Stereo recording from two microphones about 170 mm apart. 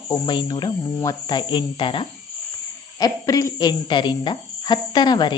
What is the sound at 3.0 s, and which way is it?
Speech, 20° left (ahead or behind).